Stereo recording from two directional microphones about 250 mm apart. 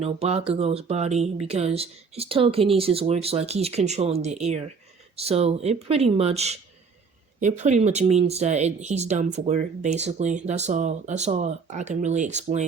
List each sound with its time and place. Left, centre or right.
0.0 s speech: right